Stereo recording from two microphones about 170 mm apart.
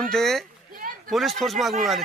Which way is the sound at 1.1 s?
Centre (ahead or behind).